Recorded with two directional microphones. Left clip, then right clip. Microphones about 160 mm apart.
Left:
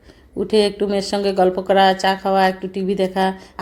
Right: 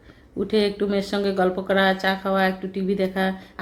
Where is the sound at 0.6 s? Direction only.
25° left (ahead or behind).